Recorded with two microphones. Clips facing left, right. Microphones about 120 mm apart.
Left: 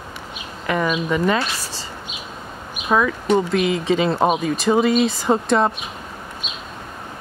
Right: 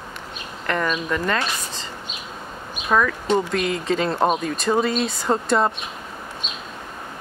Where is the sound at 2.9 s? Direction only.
5° left (ahead or behind).